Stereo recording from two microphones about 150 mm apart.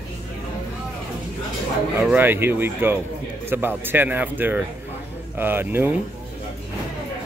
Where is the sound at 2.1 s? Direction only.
15° right (ahead or behind).